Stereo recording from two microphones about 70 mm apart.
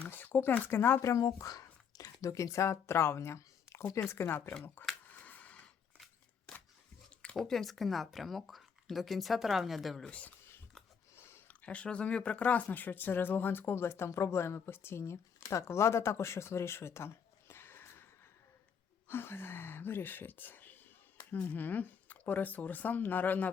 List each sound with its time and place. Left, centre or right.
0.1 s speech: left
1.1 s a sound: left
2.2 s speech: left
5.0 s a sound: left
7.3 s speech: centre
10.1 s speech: centre
11.4 s speech: centre; by 17.1 s left
17.5 s a sound: left
19.0 s speech: left